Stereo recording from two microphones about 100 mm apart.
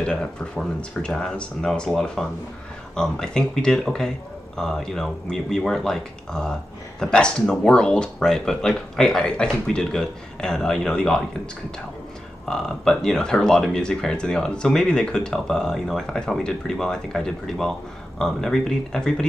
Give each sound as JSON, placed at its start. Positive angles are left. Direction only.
{"t": 0.0, "sound": "speech", "side_deg": 10}
{"t": 12.4, "sound": "speech", "side_deg": 5}